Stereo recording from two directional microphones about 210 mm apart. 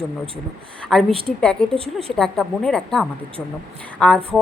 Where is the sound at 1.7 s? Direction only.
25° right (ahead or behind).